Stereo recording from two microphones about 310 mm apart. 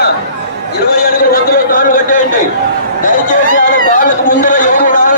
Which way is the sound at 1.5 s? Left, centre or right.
Left.